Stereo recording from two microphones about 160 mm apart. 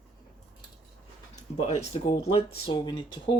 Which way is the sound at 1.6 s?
40° left (ahead or behind).